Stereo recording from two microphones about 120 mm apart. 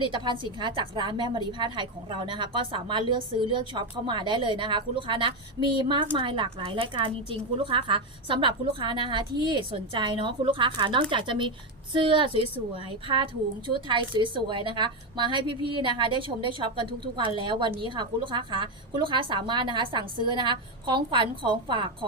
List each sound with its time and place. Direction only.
0.0 s a woman's voice: 40° right (ahead or behind)